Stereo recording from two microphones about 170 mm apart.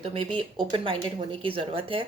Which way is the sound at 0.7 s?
30° right (ahead or behind).